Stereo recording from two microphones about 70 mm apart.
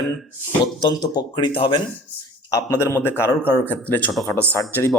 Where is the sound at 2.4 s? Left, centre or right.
Left.